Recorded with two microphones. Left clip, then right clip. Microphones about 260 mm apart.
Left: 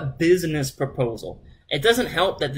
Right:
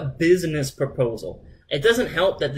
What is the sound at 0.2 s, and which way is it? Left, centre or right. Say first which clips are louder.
Speech: even; centre.